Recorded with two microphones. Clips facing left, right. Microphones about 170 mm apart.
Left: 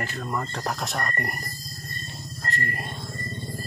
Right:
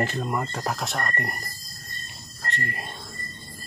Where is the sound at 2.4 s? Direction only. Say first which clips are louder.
Left 1 dB; centre (ahead or behind).